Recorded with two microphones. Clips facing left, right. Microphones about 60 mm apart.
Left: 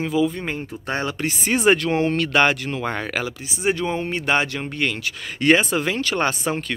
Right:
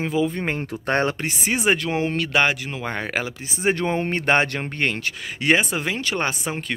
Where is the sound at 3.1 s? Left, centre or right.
Right.